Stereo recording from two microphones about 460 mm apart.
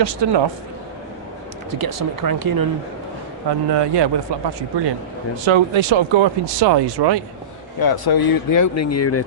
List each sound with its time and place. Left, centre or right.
0.0 s speech: right
1.8 s speech: right
3.8 s speech: right
5.5 s speech: right
6.6 s speech: right
7.8 s speech: left